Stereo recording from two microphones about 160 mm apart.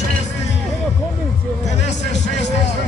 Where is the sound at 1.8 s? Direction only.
90° left.